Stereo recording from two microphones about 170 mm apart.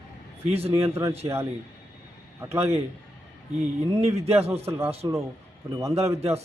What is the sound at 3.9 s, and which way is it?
Speech, 40° right (ahead or behind).